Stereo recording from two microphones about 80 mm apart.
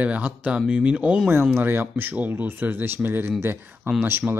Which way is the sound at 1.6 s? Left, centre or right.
Right.